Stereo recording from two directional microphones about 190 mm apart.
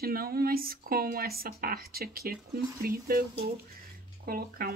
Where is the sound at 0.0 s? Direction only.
55° right (ahead or behind).